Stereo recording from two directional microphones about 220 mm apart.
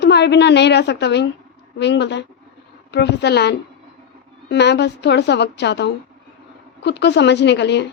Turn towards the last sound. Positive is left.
turn(degrees=50)  # may be behind; listen again after turning